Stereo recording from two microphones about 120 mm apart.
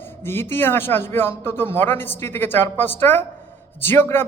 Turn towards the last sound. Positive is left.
turn(degrees=20)  # may be behind; listen again after turning